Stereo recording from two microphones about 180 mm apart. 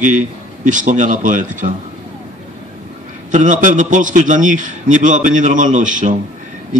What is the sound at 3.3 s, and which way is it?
A man's voice, 45° right (ahead or behind).